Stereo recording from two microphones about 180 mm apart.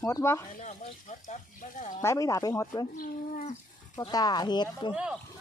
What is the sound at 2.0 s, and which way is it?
Speech, 15° left (ahead or behind).